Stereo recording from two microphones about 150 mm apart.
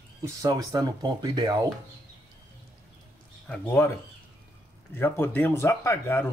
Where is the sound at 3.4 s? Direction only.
15° left (ahead or behind).